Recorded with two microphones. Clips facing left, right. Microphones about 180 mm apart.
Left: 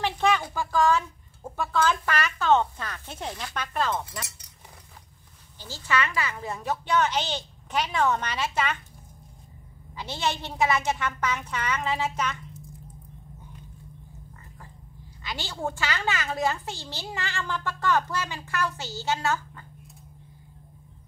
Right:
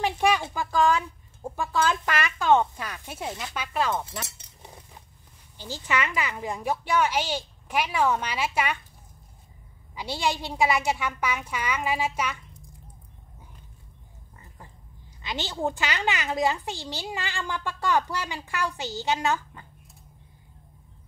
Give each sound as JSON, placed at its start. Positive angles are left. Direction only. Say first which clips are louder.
{"t": 0.0, "sound": "a sound", "louder": "right 1 dB", "side_deg": -15}
{"t": 0.6, "sound": "a woman's voice", "louder": "even", "side_deg": -15}
{"t": 4.2, "sound": "chink", "louder": "right 1 dB", "side_deg": -25}
{"t": 5.6, "sound": "a woman's voice", "louder": "even", "side_deg": -15}
{"t": 9.9, "sound": "a woman's voice", "louder": "right 2 dB", "side_deg": -15}
{"t": 15.2, "sound": "a woman's voice", "louder": "right 3 dB", "side_deg": -20}